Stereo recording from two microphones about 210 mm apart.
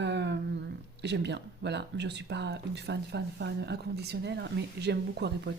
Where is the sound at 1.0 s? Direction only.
55° right (ahead or behind).